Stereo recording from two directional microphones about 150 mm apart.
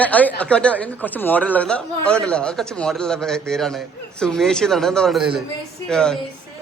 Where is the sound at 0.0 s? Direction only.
10° left (ahead or behind).